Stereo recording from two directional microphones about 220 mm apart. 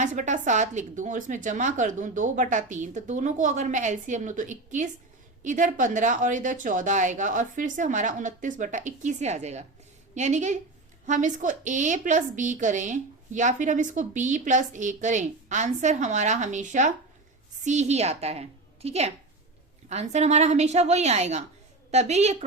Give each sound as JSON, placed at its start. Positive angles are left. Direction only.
{"t": 0.0, "sound": "a woman's voice", "side_deg": -35}